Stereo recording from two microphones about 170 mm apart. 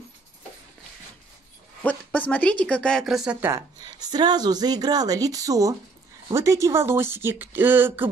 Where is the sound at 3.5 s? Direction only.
20° right (ahead or behind).